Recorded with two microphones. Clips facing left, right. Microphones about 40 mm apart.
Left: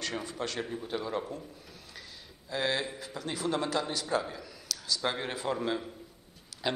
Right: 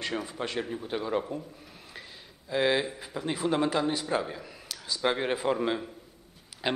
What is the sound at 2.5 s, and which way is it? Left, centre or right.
A man's voice, centre.